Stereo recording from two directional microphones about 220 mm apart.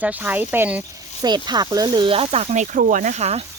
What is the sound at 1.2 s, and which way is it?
Speech, 20° right (ahead or behind).